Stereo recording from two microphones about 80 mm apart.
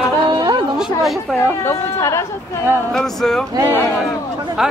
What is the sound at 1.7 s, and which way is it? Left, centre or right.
Speech, left.